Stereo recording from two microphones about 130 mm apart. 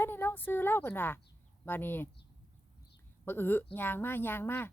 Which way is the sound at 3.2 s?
15° left (ahead or behind).